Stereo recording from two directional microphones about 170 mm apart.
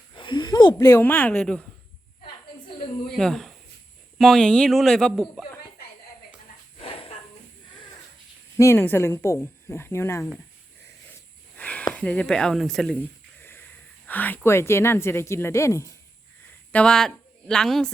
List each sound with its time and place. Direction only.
0.1 s speech: 25° left (ahead or behind); by 1.6 s 5° left (ahead or behind)
3.2 s speech: centre (ahead or behind)
6.7 s dog: 35° left (ahead or behind)
8.5 s a woman's voice: 15° left (ahead or behind)
11.5 s a sound: 10° left (ahead or behind)
11.9 s a woman's voice: 10° left (ahead or behind)
16.7 s speech: 5° left (ahead or behind)